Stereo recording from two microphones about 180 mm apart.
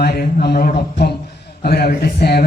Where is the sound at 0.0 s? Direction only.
60° left (ahead or behind).